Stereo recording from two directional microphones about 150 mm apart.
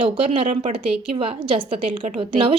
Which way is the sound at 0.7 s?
35° right (ahead or behind).